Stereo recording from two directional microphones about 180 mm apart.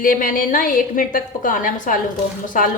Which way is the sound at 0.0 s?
50° left (ahead or behind).